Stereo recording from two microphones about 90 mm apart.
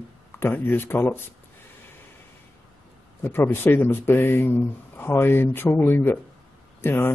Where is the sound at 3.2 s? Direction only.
25° left (ahead or behind).